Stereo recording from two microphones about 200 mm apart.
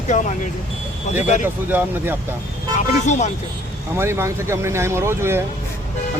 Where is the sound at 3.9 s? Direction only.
15° right (ahead or behind).